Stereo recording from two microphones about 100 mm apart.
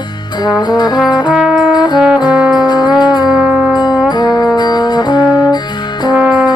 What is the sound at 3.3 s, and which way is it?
Music, 10° right (ahead or behind).